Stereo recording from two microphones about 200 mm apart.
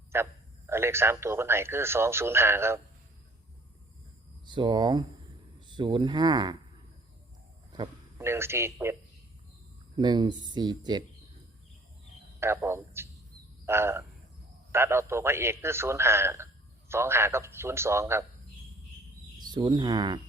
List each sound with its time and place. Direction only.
0.1 s speech: 10° right (ahead or behind)
4.4 s speech: 25° right (ahead or behind)
7.7 s a man's voice: 15° right (ahead or behind)
10.0 s speech: 20° right (ahead or behind)
12.4 s speech: 10° right (ahead or behind)
19.4 s speech: 20° right (ahead or behind)